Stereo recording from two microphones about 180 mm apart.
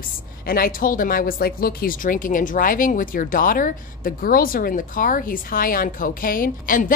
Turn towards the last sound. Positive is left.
turn(degrees=50)  # may be behind; listen again after turning